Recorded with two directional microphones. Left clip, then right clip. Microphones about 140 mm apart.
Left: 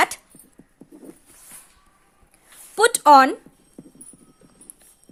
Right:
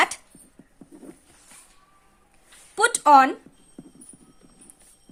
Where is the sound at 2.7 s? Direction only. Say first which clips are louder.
Left 3 dB; 30° left (ahead or behind).